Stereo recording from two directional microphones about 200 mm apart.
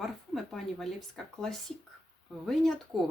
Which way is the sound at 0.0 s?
Centre (ahead or behind).